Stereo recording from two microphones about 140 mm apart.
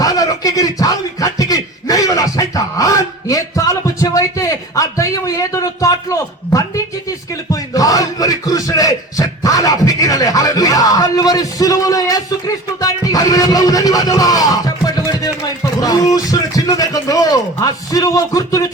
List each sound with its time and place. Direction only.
0.0 s a sound: 25° left (ahead or behind)
7.5 s music: 25° left (ahead or behind)
15.8 s speech: 25° left (ahead or behind)